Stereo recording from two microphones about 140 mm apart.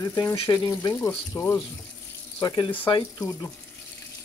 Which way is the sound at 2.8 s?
25° left (ahead or behind).